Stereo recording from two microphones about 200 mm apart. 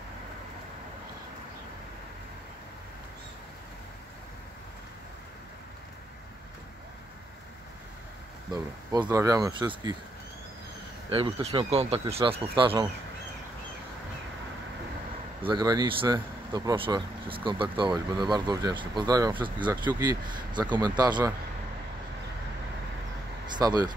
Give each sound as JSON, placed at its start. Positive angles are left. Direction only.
{"t": 9.0, "sound": "speech", "side_deg": -15}
{"t": 11.1, "sound": "speech", "side_deg": -30}
{"t": 15.4, "sound": "speech", "side_deg": -20}
{"t": 23.5, "sound": "speech", "side_deg": -20}